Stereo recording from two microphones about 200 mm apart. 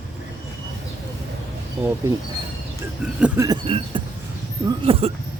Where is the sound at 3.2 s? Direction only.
15° right (ahead or behind).